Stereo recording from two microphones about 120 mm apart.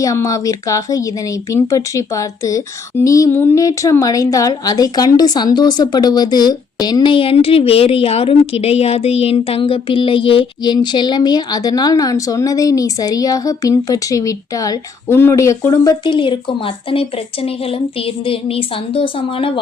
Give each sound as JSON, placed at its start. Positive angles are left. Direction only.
{"t": 0.0, "sound": "a woman's voice", "side_deg": 25}